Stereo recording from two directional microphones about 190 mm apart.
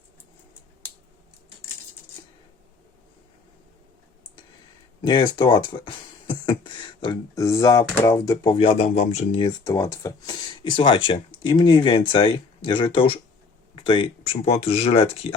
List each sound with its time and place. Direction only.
0.8 s scissors: 10° left (ahead or behind)
5.0 s speech: 25° left (ahead or behind)
9.6 s speech: 15° left (ahead or behind)